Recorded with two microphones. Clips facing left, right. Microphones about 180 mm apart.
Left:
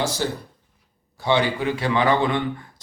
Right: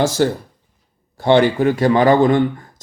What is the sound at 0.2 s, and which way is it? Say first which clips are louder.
Speech: right 9 dB; 60° right (ahead or behind).